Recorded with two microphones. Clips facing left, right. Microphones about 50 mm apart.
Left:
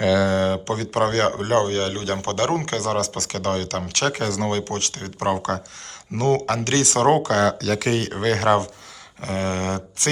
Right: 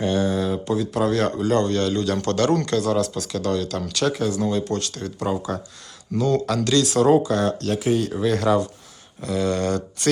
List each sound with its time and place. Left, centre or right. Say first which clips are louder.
0.0 s speech: left 3 dB; left
9.2 s speech: right 2 dB; left